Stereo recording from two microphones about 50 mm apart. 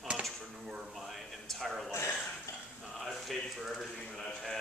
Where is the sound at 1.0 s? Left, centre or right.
Centre.